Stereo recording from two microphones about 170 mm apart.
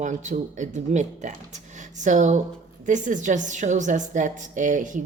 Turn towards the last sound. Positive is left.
turn(degrees=-50)  # may be behind; listen again after turning